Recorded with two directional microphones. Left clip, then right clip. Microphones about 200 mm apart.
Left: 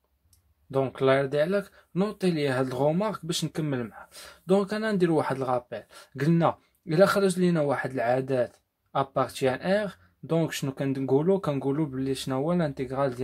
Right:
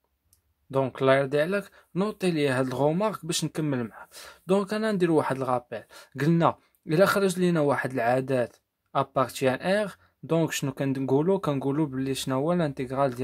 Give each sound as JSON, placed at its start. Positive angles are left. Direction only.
{"t": 0.7, "sound": "speech", "side_deg": -25}